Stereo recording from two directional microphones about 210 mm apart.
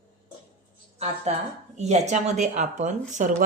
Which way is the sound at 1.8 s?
30° right (ahead or behind).